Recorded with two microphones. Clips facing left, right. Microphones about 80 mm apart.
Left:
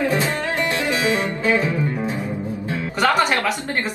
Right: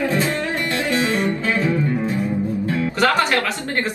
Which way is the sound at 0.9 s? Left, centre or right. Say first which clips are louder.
Right 1 dB; left.